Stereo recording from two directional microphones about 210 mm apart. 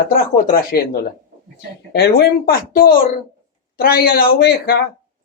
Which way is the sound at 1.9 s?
50° left (ahead or behind).